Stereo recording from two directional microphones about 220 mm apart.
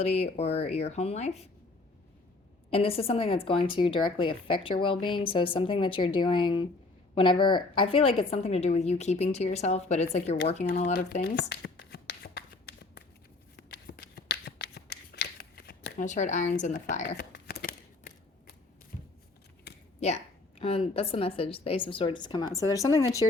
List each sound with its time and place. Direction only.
0.0 s a woman's voice: 30° left (ahead or behind)
2.6 s a woman's voice: 25° left (ahead or behind)
11.1 s shuffling cards: 45° left (ahead or behind)
16.0 s speech: 35° left (ahead or behind)
17.2 s a sound: 45° left (ahead or behind)
20.0 s a woman's voice: 30° left (ahead or behind); by 23.2 s 15° left (ahead or behind)